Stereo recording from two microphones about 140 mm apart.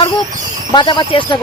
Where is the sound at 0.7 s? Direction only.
35° left (ahead or behind).